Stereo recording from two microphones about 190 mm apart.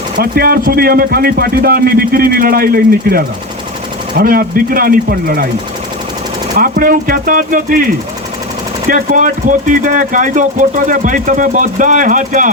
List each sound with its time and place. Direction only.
0.2 s speech: 50° right (ahead or behind)
6.6 s speech: 45° right (ahead or behind)
8.9 s speech: 45° right (ahead or behind)